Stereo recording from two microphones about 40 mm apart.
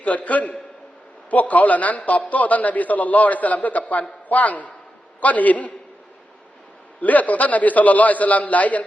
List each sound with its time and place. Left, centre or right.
0.0 s a man's voice: left
7.0 s a man's voice: left